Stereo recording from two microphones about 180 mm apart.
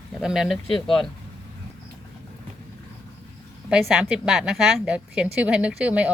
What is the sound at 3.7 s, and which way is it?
A woman's voice, centre (ahead or behind).